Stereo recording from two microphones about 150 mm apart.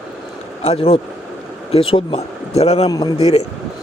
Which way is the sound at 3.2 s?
40° left (ahead or behind).